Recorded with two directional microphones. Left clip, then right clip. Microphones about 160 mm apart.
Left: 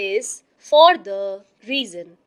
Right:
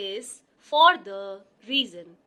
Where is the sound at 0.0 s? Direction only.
35° left (ahead or behind).